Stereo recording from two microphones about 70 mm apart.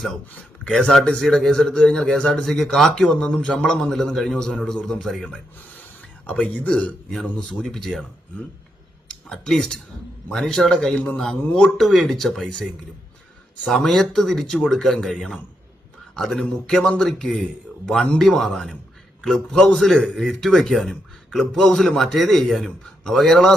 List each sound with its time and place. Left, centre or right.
0.3 s a sound: centre
0.7 s speech: centre
6.2 s speech: left
6.7 s a man's voice: centre
13.7 s a man's voice: centre